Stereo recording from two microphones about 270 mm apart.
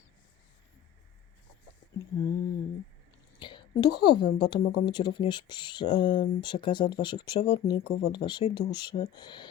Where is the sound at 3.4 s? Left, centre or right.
Centre.